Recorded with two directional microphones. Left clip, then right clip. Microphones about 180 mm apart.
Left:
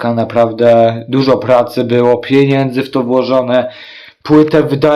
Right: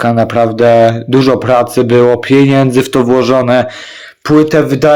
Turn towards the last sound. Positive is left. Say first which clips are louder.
# right 2 dB
turn(degrees=-10)  # may be behind; listen again after turning